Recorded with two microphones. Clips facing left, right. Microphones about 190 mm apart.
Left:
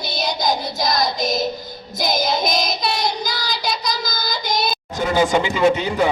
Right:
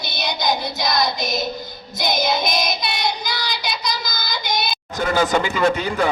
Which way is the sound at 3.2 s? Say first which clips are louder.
Left 2 dB; 45° left (ahead or behind).